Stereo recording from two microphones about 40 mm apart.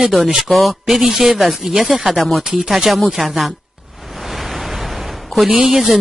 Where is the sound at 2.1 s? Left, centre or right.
Centre.